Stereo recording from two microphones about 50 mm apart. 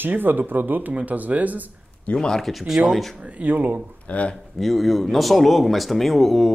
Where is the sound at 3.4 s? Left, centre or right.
Right.